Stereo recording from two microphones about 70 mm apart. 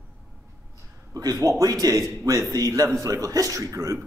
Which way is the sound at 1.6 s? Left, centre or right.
Right.